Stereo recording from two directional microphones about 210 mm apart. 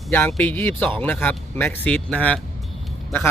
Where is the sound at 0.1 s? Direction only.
10° left (ahead or behind).